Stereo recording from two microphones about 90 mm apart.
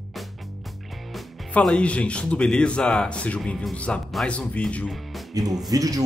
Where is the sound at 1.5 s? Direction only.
10° left (ahead or behind).